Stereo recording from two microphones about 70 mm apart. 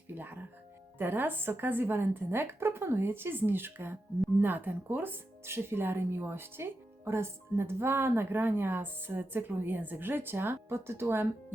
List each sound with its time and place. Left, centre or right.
0.1 s speech: right